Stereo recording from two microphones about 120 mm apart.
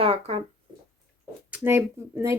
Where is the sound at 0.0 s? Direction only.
55° right (ahead or behind).